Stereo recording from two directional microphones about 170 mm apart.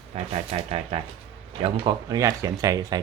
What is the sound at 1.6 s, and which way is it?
Speech, 25° right (ahead or behind).